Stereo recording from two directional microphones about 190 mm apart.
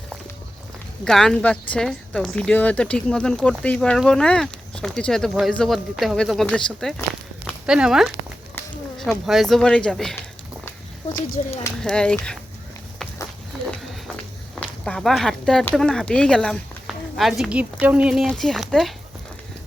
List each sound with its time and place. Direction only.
1.0 s speech: 5° left (ahead or behind)
11.4 s speech: 35° left (ahead or behind)
11.8 s speech: 5° left (ahead or behind)
14.8 s speech: centre (ahead or behind)